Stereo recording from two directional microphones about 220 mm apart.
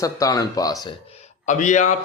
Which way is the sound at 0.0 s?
15° left (ahead or behind).